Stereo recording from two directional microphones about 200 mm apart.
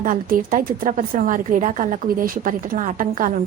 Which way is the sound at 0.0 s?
45° right (ahead or behind).